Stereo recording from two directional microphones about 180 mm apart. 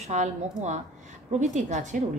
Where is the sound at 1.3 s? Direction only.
40° right (ahead or behind).